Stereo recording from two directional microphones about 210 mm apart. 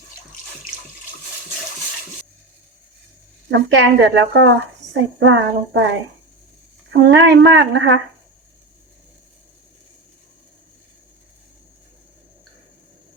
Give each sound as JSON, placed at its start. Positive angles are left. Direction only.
{"t": 3.5, "sound": "speech", "side_deg": -60}